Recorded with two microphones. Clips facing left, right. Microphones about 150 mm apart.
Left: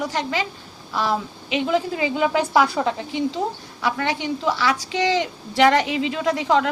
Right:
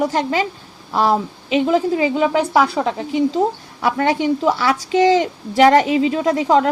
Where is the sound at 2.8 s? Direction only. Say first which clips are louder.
Right 2 dB; 20° right (ahead or behind).